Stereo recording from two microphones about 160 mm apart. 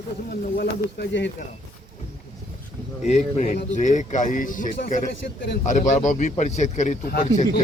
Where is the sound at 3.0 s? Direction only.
45° left (ahead or behind).